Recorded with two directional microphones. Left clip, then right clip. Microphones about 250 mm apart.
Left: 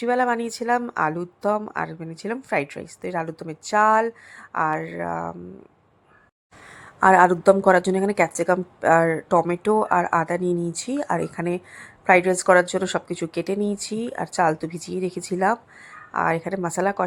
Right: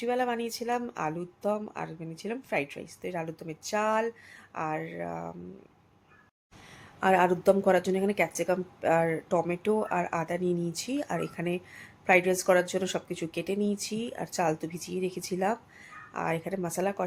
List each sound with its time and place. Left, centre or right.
0.0 s a woman's voice: centre
7.0 s a woman's voice: centre